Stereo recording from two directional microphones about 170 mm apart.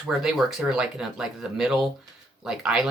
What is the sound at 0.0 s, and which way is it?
Speech, 5° right (ahead or behind).